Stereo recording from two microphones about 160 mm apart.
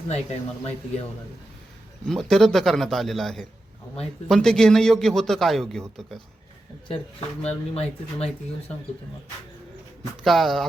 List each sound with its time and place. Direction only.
0.1 s speech: 40° left (ahead or behind)
2.0 s a man's voice: 5° left (ahead or behind)
7.4 s speech: 40° left (ahead or behind)
10.2 s a man's voice: centre (ahead or behind)